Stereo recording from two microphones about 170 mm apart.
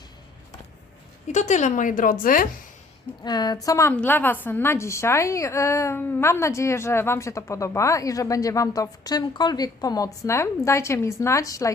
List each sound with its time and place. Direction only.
1.3 s a woman's voice: 45° left (ahead or behind)
3.2 s a woman's voice: 25° left (ahead or behind)